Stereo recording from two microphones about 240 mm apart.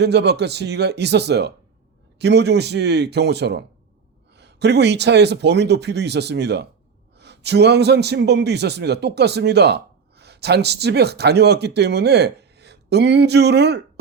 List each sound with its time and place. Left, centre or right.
0.0 s a man's voice: right